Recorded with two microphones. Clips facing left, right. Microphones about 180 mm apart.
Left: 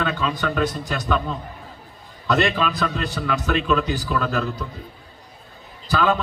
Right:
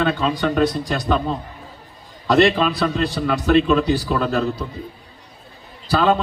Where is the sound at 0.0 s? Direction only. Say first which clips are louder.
Right 4 dB; 35° right (ahead or behind).